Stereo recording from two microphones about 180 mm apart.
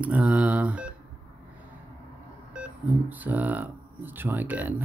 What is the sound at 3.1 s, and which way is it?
Speech, 10° right (ahead or behind).